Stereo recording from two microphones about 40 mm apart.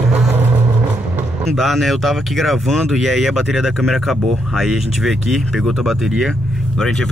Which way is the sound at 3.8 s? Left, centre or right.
Centre.